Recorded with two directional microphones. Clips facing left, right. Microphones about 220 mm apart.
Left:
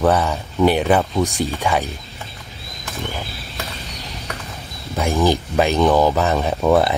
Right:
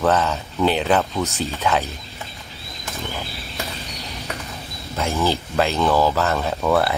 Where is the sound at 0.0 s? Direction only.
10° left (ahead or behind).